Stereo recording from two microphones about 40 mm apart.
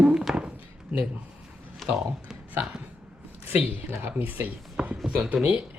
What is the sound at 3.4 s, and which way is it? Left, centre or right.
Speech, right.